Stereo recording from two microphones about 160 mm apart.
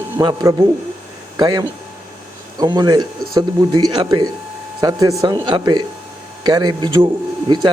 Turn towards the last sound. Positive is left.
turn(degrees=-30)  # may be behind; listen again after turning